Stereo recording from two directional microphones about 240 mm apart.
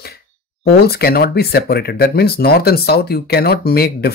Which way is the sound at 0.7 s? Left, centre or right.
Left.